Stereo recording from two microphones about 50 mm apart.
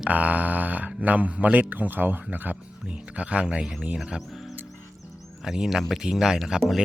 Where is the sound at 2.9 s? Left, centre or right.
Right.